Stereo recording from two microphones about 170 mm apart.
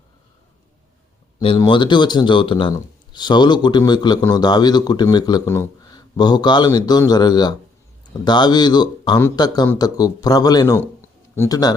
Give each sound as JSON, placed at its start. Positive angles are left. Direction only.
{"t": 1.5, "sound": "speech", "side_deg": 25}